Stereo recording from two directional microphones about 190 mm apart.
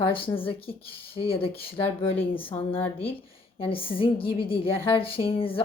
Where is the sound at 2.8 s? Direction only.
10° left (ahead or behind).